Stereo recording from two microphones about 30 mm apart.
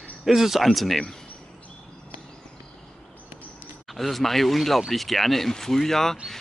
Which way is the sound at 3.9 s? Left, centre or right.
Centre.